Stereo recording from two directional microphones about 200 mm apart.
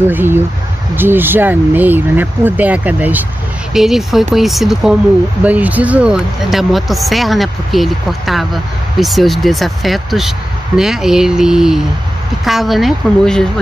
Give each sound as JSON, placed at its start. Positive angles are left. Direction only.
{"t": 0.0, "sound": "speech", "side_deg": -10}